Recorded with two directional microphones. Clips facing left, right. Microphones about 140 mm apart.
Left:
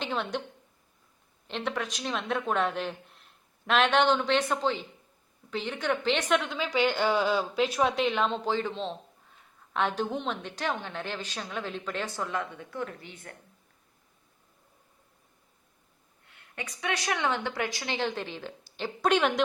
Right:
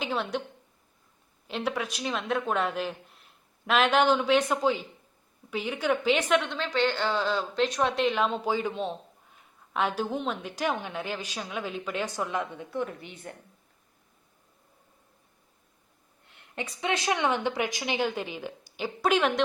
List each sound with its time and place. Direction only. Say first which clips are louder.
0.0 s a woman's voice: right 1 dB; 5° right (ahead or behind)
1.5 s a woman's voice: right 2 dB; 5° right (ahead or behind)
16.6 s a woman's voice: right 3 dB; 25° right (ahead or behind); by 19.3 s 5° right (ahead or behind)